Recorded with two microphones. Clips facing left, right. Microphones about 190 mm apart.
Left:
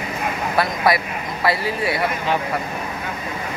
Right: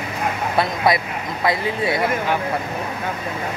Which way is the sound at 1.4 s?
20° right (ahead or behind).